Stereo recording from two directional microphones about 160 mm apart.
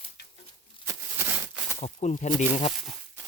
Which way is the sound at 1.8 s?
45° left (ahead or behind).